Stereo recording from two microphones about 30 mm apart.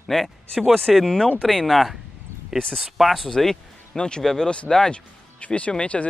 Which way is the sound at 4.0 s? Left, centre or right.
Left.